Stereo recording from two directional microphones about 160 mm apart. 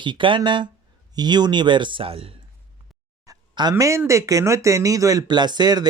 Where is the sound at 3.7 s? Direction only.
15° right (ahead or behind).